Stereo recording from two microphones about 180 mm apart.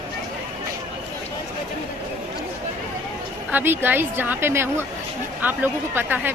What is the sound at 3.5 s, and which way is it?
A woman's voice, 10° right (ahead or behind).